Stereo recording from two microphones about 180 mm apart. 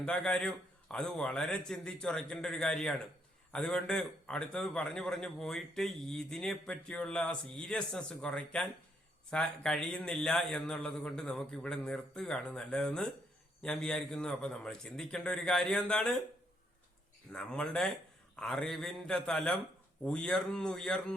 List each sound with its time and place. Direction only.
0.0 s speech: 5° left (ahead or behind)
17.3 s speech: 5° left (ahead or behind)